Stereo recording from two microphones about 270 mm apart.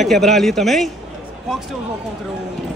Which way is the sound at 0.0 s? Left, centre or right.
Centre.